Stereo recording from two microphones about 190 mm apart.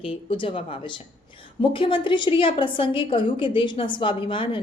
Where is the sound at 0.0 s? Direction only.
30° left (ahead or behind).